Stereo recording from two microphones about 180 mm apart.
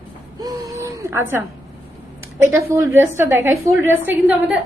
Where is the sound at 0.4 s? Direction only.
20° right (ahead or behind).